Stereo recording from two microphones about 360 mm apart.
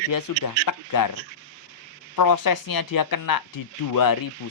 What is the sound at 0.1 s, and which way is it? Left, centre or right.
Speech, left.